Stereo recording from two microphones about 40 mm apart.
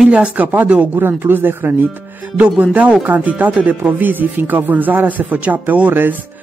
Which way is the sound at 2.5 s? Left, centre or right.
Right.